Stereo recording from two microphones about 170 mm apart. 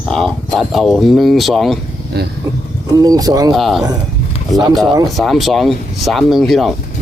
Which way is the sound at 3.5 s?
Centre (ahead or behind).